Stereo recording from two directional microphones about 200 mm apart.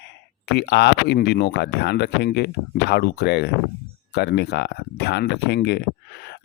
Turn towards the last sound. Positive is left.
turn(degrees=55)  # may be behind; listen again after turning